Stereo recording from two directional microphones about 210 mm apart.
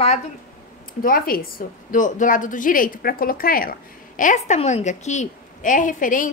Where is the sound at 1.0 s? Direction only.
45° left (ahead or behind).